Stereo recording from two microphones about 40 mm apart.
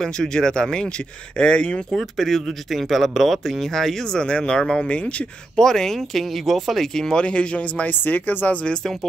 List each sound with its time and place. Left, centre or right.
0.0 s speech: centre
1.9 s speech: centre
4.8 s speech: left
5.6 s speech: centre
6.9 s speech: centre
7.2 s speech: left
8.0 s speech: left
8.8 s speech: centre